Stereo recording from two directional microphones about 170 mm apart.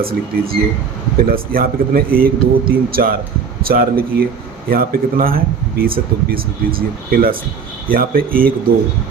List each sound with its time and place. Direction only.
0.0 s speech: 60° right (ahead or behind)